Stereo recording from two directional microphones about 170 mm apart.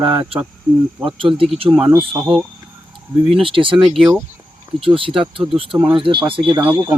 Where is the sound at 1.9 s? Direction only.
20° right (ahead or behind).